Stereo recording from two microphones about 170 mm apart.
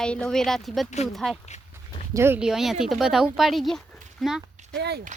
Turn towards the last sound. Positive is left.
turn(degrees=-80)